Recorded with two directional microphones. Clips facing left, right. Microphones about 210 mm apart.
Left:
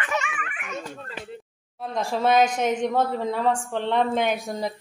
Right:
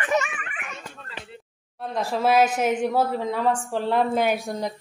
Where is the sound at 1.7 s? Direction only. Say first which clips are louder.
Even; centre (ahead or behind).